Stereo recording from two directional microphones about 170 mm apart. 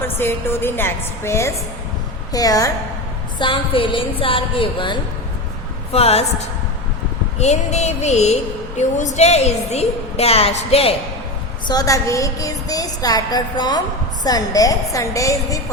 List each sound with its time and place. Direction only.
0.0 s a woman's voice: 15° left (ahead or behind)
2.3 s music: 20° left (ahead or behind)
5.9 s a woman's voice: 35° left (ahead or behind)
11.7 s music: 20° left (ahead or behind)